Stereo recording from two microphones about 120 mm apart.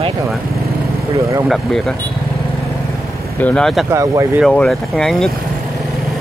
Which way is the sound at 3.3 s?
10° left (ahead or behind).